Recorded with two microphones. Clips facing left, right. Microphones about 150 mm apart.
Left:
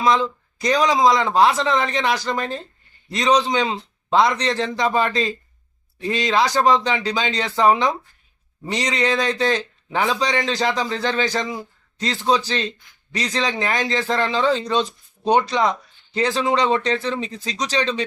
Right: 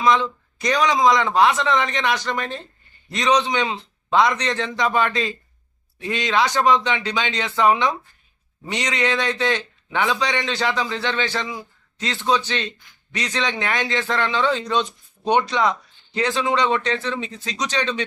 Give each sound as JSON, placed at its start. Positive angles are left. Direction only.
{"t": 0.0, "sound": "speech", "side_deg": 35}